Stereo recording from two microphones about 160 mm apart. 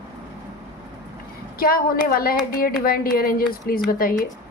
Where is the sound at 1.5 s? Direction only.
65° left (ahead or behind).